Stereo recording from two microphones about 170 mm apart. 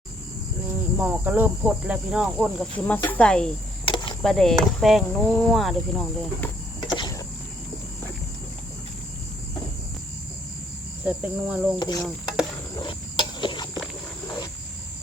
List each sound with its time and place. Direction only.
0.9 s speech: 10° right (ahead or behind); by 3.5 s 5° left (ahead or behind)
3.8 s a sound: 25° left (ahead or behind)
4.2 s speech: centre (ahead or behind)
6.8 s vehicle: 25° left (ahead or behind)
11.0 s speech: 10° right (ahead or behind)
11.8 s speech: 25° left (ahead or behind)
12.8 s a sound: 30° left (ahead or behind)